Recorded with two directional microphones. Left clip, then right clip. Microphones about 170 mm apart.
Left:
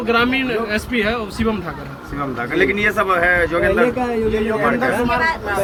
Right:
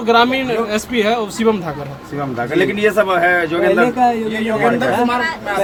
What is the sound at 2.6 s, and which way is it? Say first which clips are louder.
Speech: right 2 dB; 50° right (ahead or behind).